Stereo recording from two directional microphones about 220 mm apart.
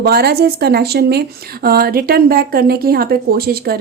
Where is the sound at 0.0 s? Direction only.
45° right (ahead or behind).